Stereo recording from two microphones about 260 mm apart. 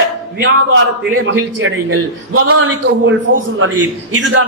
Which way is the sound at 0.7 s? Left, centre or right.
Right.